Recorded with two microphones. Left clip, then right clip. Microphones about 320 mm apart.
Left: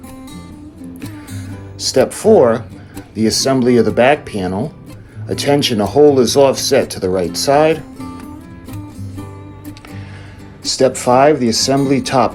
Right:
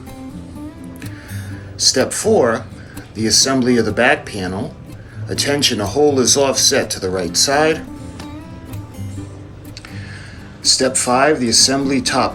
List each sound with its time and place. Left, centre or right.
1.8 s speech: centre
10.6 s speech: centre